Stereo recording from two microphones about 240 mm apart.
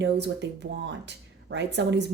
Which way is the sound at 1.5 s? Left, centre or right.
Right.